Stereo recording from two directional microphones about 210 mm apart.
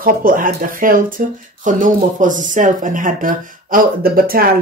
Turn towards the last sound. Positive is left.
turn(degrees=-45)  # may be behind; listen again after turning